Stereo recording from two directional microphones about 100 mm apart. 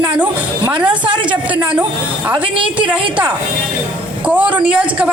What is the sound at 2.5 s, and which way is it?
Speech, 60° right (ahead or behind).